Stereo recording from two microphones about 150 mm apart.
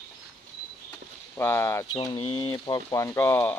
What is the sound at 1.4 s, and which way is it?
Speech, 15° left (ahead or behind).